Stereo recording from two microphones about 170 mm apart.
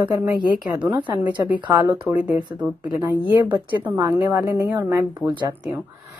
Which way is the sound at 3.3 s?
30° right (ahead or behind).